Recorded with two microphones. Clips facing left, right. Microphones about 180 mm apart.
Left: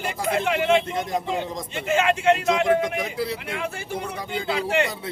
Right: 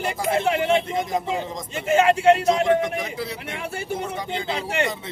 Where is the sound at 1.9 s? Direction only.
35° right (ahead or behind).